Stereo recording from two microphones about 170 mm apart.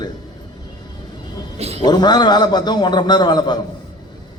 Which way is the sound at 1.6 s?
40° right (ahead or behind).